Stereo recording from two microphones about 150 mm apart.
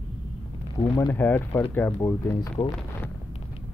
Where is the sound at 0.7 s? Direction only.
25° left (ahead or behind).